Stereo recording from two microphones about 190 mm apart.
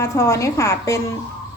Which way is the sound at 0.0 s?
15° left (ahead or behind).